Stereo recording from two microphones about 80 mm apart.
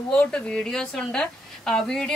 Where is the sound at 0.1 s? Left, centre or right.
Centre.